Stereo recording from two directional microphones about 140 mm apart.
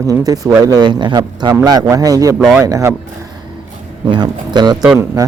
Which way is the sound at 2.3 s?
5° right (ahead or behind).